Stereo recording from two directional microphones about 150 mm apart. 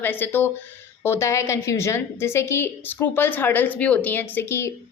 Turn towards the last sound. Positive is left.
turn(degrees=15)  # may be behind; listen again after turning